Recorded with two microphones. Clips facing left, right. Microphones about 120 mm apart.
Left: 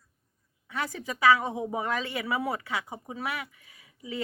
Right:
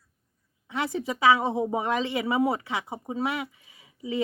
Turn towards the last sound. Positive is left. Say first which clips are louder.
# right 6 dB
turn(degrees=-20)  # may be behind; listen again after turning